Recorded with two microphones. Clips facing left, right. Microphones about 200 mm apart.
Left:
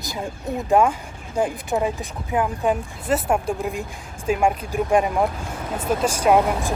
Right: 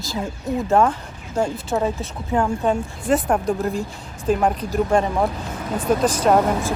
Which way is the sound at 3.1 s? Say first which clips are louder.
Right 2 dB; 5° left (ahead or behind).